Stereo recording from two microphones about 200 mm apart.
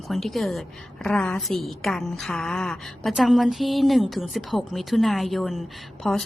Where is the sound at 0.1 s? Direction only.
Centre (ahead or behind).